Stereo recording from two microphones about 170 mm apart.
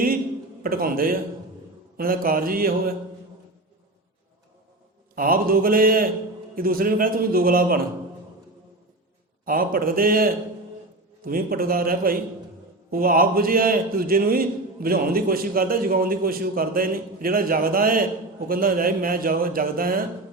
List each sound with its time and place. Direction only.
0.6 s a man's voice: 60° right (ahead or behind)
5.1 s a man's voice: 55° right (ahead or behind)
9.5 s a man's voice: 60° right (ahead or behind)